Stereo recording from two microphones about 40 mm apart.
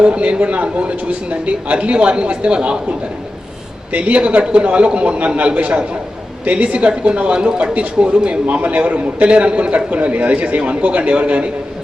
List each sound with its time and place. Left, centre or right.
0.0 s speech: right
3.9 s a man's voice: right